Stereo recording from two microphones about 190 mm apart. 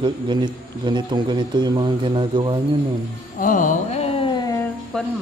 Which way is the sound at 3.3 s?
45° left (ahead or behind).